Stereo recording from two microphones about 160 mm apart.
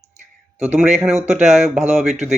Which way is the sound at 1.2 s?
45° right (ahead or behind).